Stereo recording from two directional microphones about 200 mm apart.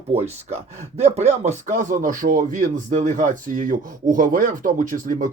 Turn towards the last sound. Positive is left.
turn(degrees=-40)  # may be behind; listen again after turning